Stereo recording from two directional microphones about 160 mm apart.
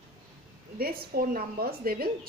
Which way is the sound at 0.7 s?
70° right (ahead or behind).